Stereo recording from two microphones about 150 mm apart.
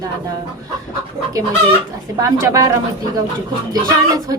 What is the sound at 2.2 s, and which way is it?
Speech, 20° right (ahead or behind).